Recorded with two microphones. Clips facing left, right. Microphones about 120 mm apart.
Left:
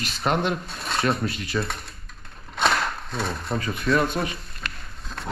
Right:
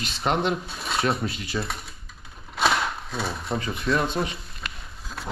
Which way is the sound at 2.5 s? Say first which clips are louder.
Even; centre (ahead or behind).